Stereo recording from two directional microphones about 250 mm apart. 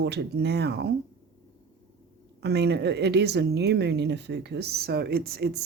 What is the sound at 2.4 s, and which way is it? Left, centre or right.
A woman's voice, right.